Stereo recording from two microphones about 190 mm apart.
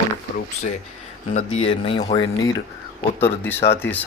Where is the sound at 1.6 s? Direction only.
30° left (ahead or behind).